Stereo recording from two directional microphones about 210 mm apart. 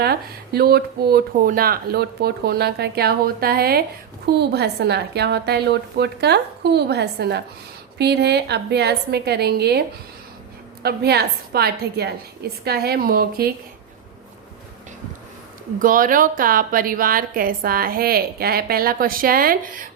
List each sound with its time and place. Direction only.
0.0 s a woman's voice: 50° right (ahead or behind)
10.8 s a woman's voice: 50° right (ahead or behind)
15.8 s a woman's voice: 40° right (ahead or behind)